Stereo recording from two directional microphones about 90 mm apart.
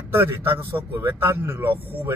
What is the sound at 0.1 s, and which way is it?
A man's voice, 25° right (ahead or behind).